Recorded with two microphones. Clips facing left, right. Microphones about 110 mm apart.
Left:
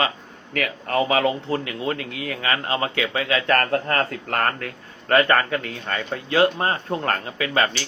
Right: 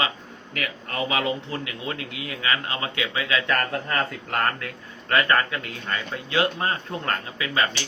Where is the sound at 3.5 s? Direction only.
50° left (ahead or behind).